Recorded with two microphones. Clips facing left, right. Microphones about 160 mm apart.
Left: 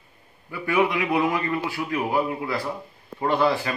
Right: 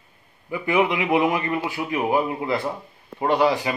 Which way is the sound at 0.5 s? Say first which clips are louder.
Right 2 dB; 20° right (ahead or behind).